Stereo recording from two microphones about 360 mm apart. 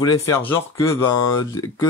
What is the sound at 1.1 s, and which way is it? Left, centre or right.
Speech, left.